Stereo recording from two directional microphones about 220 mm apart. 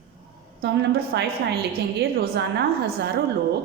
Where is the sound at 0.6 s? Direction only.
50° right (ahead or behind).